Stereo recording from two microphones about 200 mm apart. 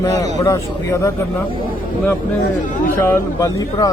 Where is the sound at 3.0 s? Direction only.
15° left (ahead or behind).